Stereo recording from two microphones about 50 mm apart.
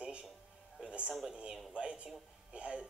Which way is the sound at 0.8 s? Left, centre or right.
Right.